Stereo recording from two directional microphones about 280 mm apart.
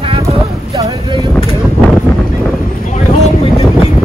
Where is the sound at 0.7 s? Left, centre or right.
Centre.